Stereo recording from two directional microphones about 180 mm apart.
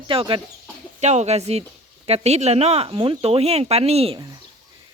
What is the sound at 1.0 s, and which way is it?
Speech, 40° right (ahead or behind).